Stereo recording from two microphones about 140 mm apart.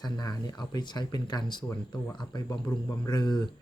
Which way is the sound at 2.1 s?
30° left (ahead or behind).